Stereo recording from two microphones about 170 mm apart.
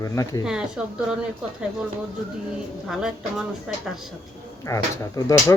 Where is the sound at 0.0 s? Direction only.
20° left (ahead or behind).